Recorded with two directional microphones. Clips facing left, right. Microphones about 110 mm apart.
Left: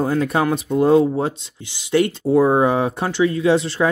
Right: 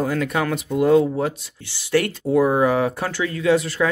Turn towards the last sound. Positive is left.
turn(degrees=25)  # may be behind; listen again after turning